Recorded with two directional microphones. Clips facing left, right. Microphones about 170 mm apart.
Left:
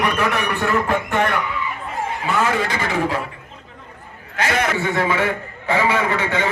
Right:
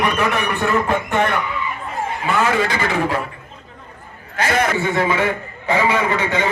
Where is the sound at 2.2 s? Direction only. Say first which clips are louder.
Right 2 dB; 75° right (ahead or behind).